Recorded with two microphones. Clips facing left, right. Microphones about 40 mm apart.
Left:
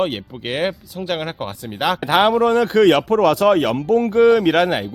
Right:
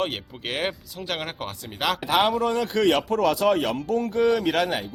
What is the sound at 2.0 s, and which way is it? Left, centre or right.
Speech, left.